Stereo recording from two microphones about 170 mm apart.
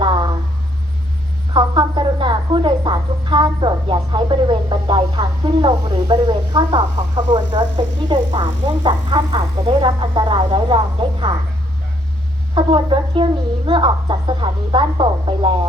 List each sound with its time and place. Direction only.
0.0 s a sound: 25° right (ahead or behind)
1.5 s a woman's voice: 25° right (ahead or behind)
12.5 s speech: 30° right (ahead or behind)